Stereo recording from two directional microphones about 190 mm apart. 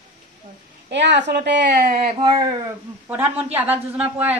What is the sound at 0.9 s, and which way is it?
A woman's voice, 65° right (ahead or behind).